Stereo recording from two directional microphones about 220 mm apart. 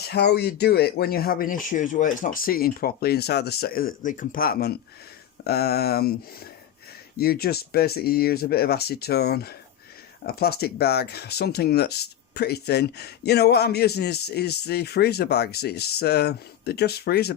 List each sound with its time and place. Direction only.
0.1 s speech: 50° left (ahead or behind)